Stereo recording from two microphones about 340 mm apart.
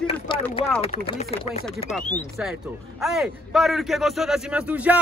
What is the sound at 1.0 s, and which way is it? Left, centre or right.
Chopping, centre.